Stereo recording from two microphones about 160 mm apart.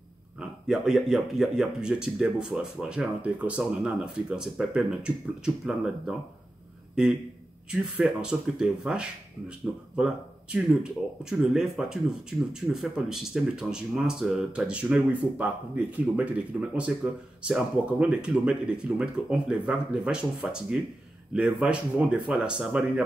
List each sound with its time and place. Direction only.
0.4 s speech: centre (ahead or behind)